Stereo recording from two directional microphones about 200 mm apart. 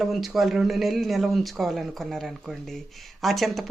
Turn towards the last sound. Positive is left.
turn(degrees=0)  # may be behind; listen again after turning